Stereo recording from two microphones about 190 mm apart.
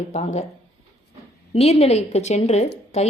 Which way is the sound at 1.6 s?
35° left (ahead or behind).